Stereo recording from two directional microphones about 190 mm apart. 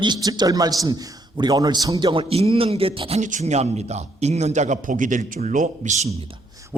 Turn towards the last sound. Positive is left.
turn(degrees=-40)  # may be behind; listen again after turning